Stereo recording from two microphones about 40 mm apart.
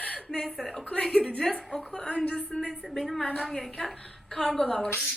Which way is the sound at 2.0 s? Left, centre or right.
Left.